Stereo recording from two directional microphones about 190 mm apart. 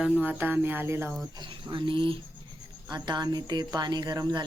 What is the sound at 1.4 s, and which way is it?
Speech, 25° right (ahead or behind).